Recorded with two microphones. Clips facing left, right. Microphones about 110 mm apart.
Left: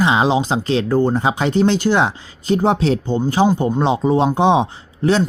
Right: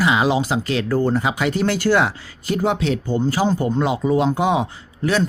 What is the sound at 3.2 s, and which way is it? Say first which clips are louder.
Speech: left 3 dB; 20° left (ahead or behind).